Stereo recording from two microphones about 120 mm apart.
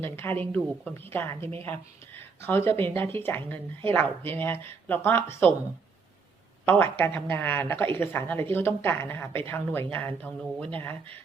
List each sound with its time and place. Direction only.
0.0 s speech: 15° left (ahead or behind)
6.7 s a woman's voice: 15° left (ahead or behind)